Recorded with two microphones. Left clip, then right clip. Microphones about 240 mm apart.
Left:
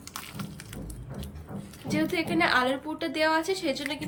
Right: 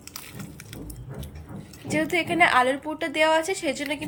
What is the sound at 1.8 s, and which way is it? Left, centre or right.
A woman's voice, centre.